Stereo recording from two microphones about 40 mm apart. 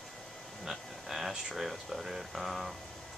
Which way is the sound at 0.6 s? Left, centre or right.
Centre.